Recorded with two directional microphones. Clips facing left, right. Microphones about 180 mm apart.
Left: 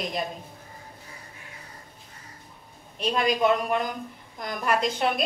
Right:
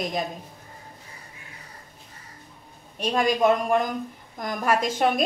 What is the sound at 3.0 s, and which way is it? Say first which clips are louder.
A woman's voice: right 2 dB; 45° right (ahead or behind).